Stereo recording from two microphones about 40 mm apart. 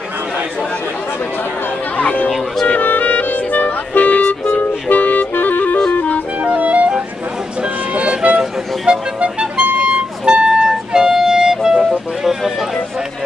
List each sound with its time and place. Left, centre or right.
2.0 s music: left
2.8 s music: left
6.3 s music: right
7.9 s music: right
9.2 s music: right; by 11.8 s centre
12.2 s a sound: centre